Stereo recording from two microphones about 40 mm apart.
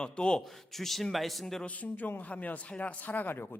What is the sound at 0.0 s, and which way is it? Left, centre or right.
Speech, left.